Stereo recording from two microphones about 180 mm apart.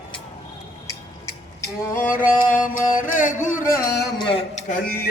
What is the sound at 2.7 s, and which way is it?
Mantra, 45° left (ahead or behind).